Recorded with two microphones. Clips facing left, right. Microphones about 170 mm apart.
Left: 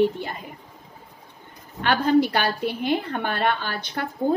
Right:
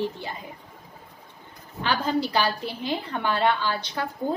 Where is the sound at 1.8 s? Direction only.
60° left (ahead or behind).